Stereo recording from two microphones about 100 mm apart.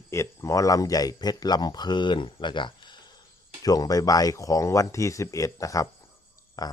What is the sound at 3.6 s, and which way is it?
Speech, 40° left (ahead or behind).